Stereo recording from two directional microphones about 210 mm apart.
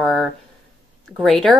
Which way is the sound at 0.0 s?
Centre (ahead or behind).